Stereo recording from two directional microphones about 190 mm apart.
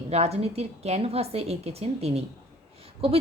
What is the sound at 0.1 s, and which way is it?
Speech, 35° right (ahead or behind).